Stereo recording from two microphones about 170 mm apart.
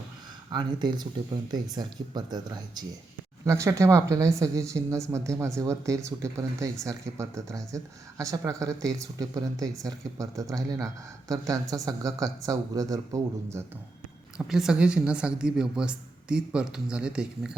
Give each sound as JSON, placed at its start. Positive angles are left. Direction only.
{"t": 0.5, "sound": "a woman's voice", "side_deg": -25}
{"t": 14.3, "sound": "speech", "side_deg": -5}